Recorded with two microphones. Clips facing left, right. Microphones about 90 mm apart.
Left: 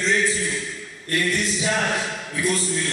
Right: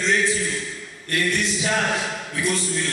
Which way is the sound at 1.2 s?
25° left (ahead or behind).